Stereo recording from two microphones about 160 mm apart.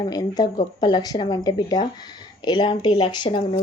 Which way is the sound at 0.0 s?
25° left (ahead or behind).